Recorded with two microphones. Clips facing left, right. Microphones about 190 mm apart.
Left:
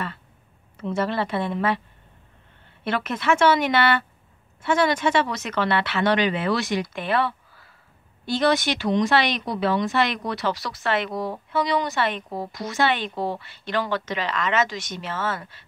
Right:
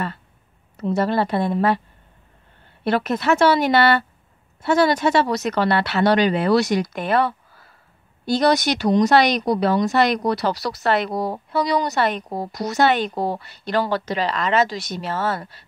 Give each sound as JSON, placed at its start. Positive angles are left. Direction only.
{"t": 0.7, "sound": "speech", "side_deg": -40}
{"t": 2.8, "sound": "speech", "side_deg": -40}